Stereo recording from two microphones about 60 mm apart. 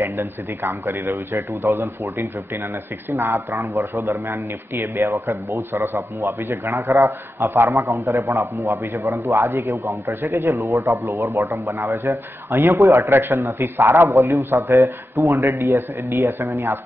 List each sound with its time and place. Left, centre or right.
0.0 s a man's voice: right
1.1 s a man's voice: right
5.5 s speech: right
7.8 s a man's voice: right
13.1 s a man's voice: right
13.4 s speech: right
13.7 s a man's voice: right
14.0 s a man's voice: right